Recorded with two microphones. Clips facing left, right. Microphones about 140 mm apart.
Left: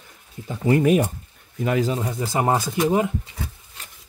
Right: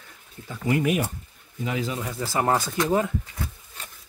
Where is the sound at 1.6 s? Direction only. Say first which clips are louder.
Left 7 dB; 55° left (ahead or behind).